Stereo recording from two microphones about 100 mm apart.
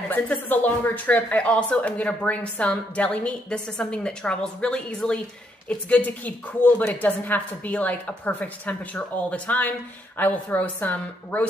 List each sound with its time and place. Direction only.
0.1 s a woman's voice: 20° left (ahead or behind)